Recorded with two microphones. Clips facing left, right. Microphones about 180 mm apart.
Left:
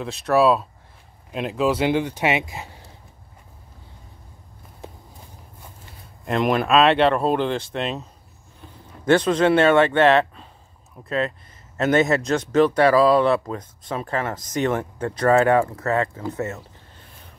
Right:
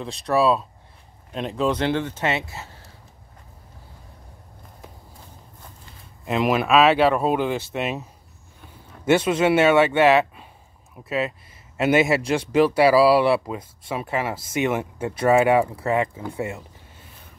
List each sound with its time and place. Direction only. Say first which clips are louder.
0.0 s speech: left 2 dB; centre (ahead or behind)
4.8 s walk: left 6 dB; 25° left (ahead or behind)
6.2 s speech: even; centre (ahead or behind)